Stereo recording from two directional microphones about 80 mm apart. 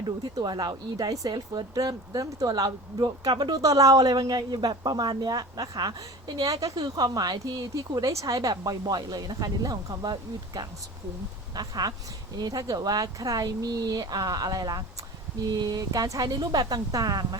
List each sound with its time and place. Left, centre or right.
0.4 s speech: right